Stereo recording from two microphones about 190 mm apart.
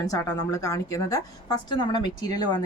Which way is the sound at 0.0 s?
20° left (ahead or behind).